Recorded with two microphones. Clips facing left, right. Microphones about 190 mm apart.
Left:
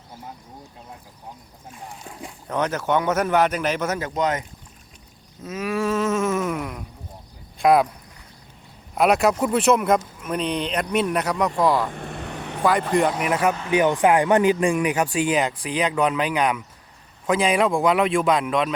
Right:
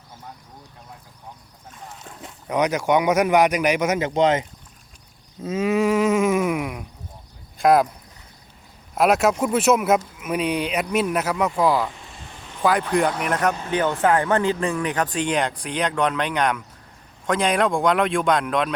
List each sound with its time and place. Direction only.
2.5 s a man's voice: 15° right (ahead or behind)
9.0 s speech: centre (ahead or behind)
11.9 s vehicle: 60° left (ahead or behind)
12.6 s speech: centre (ahead or behind)